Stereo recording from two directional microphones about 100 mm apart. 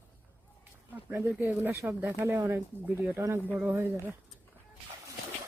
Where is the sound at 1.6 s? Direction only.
25° right (ahead or behind).